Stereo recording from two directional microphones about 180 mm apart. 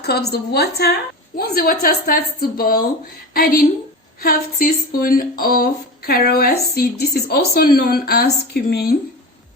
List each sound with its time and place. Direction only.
0.0 s a woman's voice: 65° left (ahead or behind)